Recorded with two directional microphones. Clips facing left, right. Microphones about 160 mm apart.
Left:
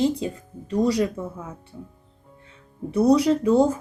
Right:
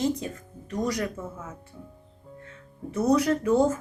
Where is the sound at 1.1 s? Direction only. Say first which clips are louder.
Left 4 dB; 10° left (ahead or behind).